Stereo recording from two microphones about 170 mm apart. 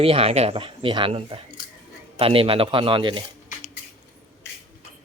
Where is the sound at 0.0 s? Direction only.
35° right (ahead or behind).